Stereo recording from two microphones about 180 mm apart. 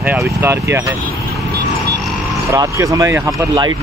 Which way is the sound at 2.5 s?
20° right (ahead or behind).